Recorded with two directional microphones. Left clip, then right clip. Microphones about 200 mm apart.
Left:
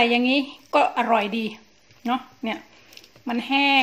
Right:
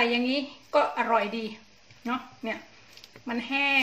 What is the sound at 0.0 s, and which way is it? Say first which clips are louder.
A woman's voice: left 6 dB; 40° left (ahead or behind).